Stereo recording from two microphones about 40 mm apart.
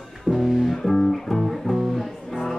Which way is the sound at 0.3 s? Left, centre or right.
Centre.